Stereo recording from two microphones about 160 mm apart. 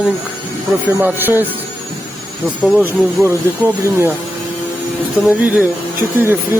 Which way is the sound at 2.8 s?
15° right (ahead or behind).